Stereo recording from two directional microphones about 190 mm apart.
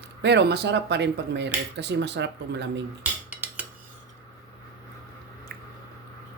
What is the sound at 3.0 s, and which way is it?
Dishes, 10° right (ahead or behind).